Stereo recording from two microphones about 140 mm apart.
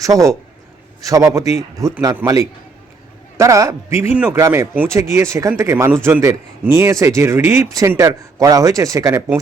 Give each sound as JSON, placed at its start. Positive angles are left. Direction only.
{"t": 0.0, "sound": "a man's voice", "side_deg": -25}